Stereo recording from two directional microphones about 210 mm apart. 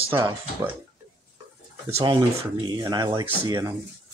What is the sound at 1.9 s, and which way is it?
Speech, 20° right (ahead or behind).